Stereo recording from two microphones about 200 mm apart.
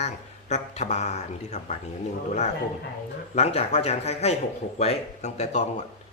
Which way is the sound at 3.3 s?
30° left (ahead or behind).